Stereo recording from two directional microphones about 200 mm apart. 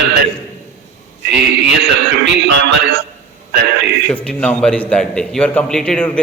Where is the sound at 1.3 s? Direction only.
60° right (ahead or behind).